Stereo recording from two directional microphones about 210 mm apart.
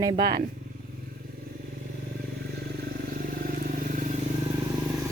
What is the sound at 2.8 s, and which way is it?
Vehicle, 45° right (ahead or behind).